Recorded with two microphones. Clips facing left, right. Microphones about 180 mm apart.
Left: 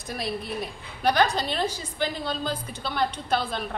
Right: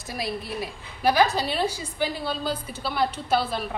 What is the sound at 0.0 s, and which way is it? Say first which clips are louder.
A woman's voice: even; centre (ahead or behind).